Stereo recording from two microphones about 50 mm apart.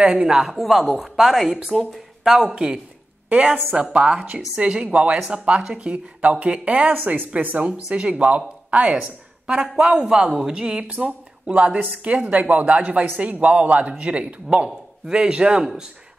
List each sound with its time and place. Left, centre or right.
0.0 s a man's voice: centre
0.5 s a man's voice: centre; by 6.9 s right
6.9 s a woman's voice: right; by 15.8 s centre